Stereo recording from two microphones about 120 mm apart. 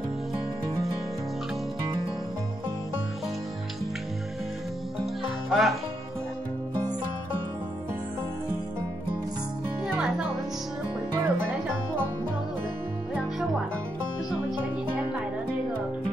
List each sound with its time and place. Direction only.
5.5 s music: centre (ahead or behind)
11.1 s music: 20° right (ahead or behind)